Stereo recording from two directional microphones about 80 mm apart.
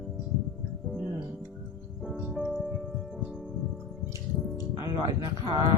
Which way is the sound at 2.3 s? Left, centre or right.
Centre.